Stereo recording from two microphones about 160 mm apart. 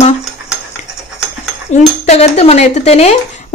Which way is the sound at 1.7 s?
45° left (ahead or behind).